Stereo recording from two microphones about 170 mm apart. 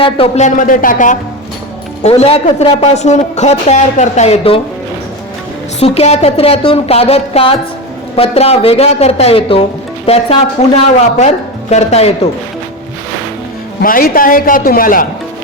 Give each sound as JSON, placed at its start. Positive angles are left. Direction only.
{"t": 0.0, "sound": "speech", "side_deg": 40}
{"t": 2.0, "sound": "speech", "side_deg": 35}
{"t": 5.8, "sound": "speech", "side_deg": 35}
{"t": 13.8, "sound": "a man's voice", "side_deg": 55}